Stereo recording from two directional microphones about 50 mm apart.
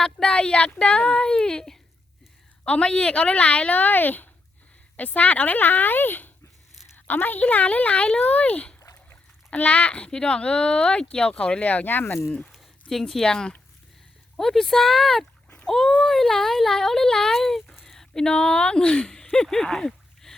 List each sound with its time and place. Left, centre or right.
0.0 s speech: centre
11.6 s speech: left
12.5 s speech: centre
15.4 s splash: left
15.9 s speech: centre